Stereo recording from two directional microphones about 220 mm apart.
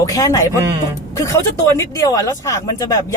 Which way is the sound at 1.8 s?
15° left (ahead or behind).